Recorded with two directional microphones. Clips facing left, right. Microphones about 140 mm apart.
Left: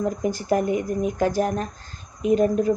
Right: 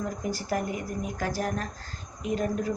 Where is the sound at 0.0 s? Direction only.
20° left (ahead or behind).